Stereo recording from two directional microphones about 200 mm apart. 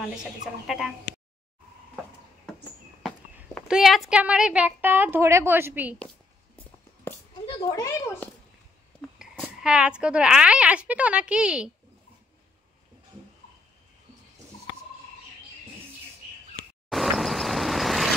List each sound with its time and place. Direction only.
0.0 s a woman's voice: 5° right (ahead or behind)
2.5 s a sound: centre (ahead or behind)
3.5 s a woman's voice: centre (ahead or behind)
7.1 s a sound: 10° left (ahead or behind)
7.4 s speech: 20° left (ahead or behind)
9.2 s a woman's voice: 5° right (ahead or behind)
16.9 s vehicle: centre (ahead or behind)